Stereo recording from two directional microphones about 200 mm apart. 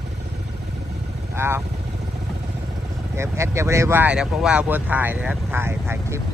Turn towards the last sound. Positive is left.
turn(degrees=-10)  # may be behind; listen again after turning